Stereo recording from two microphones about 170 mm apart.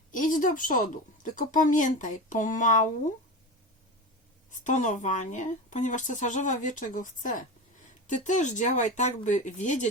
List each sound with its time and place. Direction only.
0.1 s speech: 50° left (ahead or behind)
4.5 s speech: 45° left (ahead or behind)